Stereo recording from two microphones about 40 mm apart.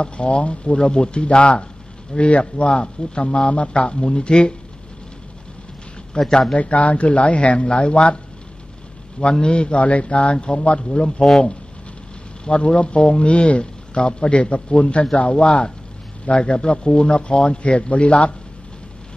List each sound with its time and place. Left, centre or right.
0.0 s a man's voice: left
6.1 s speech: centre
6.5 s a man's voice: left
9.2 s a man's voice: left
12.4 s a man's voice: left